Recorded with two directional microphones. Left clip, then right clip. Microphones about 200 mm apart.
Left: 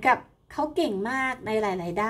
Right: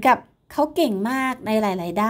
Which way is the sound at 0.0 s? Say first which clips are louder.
Right 5 dB; 40° right (ahead or behind).